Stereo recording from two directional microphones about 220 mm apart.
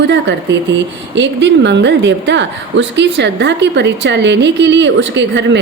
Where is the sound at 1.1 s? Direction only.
55° right (ahead or behind).